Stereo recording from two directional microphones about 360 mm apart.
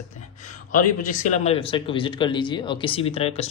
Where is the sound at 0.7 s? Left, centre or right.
Left.